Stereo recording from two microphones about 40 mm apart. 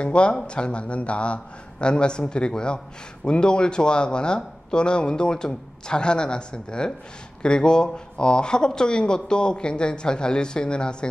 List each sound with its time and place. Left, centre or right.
0.0 s a man's voice: left